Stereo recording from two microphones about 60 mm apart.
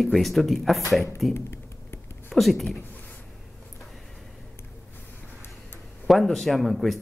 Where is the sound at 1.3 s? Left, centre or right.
Left.